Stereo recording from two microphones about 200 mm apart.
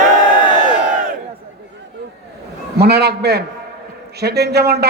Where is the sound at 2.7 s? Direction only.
55° right (ahead or behind).